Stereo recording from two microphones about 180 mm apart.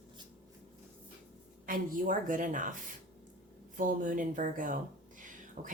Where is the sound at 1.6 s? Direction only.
50° right (ahead or behind).